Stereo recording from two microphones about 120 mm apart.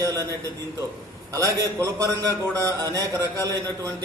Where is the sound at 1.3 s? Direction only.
30° right (ahead or behind).